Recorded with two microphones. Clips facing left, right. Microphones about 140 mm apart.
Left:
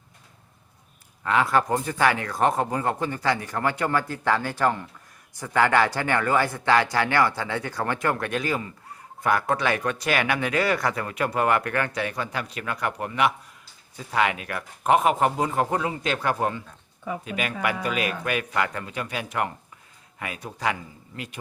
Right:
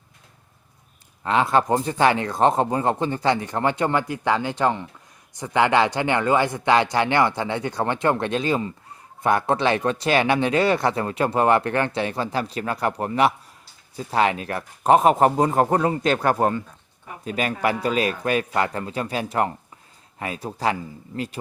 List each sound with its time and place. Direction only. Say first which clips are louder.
1.2 s speech: right 2 dB; 25° right (ahead or behind)